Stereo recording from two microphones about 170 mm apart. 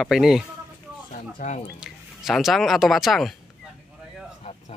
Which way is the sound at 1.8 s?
Centre (ahead or behind).